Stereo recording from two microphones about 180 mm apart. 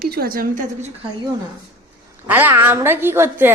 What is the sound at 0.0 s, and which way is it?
Speech, 60° right (ahead or behind).